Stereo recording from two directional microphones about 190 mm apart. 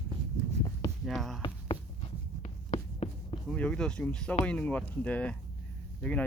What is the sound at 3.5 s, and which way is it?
Speech, 5° left (ahead or behind).